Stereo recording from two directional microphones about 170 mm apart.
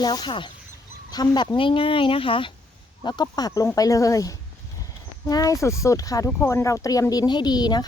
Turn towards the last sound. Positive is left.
turn(degrees=25)  # may be behind; listen again after turning